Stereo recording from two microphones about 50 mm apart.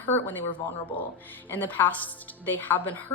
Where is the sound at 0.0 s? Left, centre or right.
Left.